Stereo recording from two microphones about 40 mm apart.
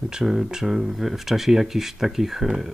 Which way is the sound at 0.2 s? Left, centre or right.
Centre.